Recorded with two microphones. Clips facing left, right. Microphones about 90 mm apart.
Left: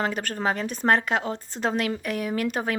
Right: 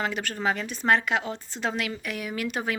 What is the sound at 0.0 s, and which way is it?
A woman's voice, 40° left (ahead or behind).